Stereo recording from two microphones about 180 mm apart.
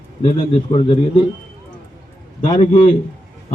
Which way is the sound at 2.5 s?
45° left (ahead or behind).